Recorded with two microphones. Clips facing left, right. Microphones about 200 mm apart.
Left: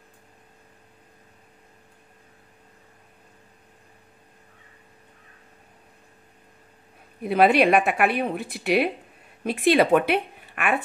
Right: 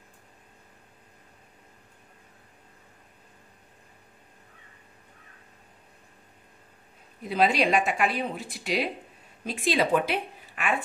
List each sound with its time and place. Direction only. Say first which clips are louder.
7.2 s speech: left 6 dB; 60° left (ahead or behind)